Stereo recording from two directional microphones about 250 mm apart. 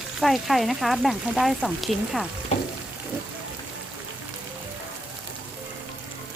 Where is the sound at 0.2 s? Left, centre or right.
Centre.